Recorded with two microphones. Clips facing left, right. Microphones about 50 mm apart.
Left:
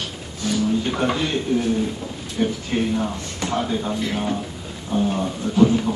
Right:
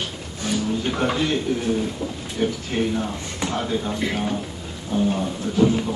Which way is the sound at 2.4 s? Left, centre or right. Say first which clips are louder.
Left 1 dB; centre.